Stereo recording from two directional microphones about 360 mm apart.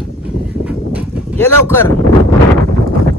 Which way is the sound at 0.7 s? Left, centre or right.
Centre.